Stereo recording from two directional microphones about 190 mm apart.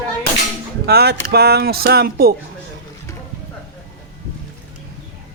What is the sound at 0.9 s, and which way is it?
Speech, 55° right (ahead or behind).